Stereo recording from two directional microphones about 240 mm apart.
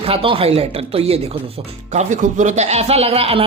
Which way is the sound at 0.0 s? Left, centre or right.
Right.